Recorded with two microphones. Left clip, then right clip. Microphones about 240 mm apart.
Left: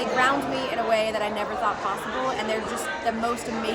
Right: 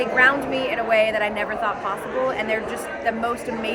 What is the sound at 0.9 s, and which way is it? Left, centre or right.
Speech, left.